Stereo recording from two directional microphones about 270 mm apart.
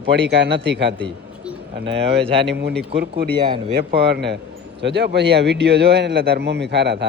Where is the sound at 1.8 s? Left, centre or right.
Centre.